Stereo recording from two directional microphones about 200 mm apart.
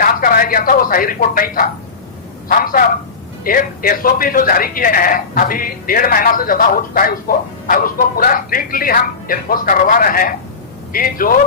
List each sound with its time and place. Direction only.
0.0 s a man's voice: 45° left (ahead or behind)